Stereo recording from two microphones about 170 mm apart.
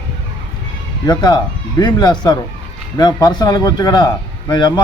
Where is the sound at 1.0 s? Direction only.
25° left (ahead or behind).